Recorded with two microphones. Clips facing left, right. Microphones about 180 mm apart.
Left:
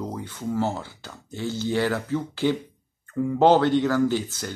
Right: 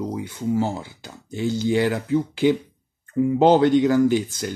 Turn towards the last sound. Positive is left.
turn(degrees=-15)  # may be behind; listen again after turning